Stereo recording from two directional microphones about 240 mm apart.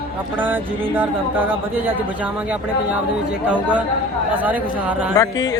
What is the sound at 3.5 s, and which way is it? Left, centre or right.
Speech, centre.